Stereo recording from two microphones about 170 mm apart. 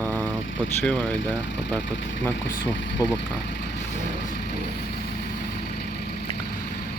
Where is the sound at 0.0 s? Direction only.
10° left (ahead or behind).